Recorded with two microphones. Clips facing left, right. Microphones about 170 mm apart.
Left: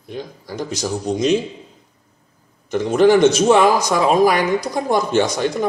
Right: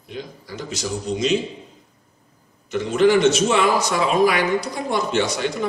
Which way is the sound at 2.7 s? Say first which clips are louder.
Left 3 dB; 45° left (ahead or behind).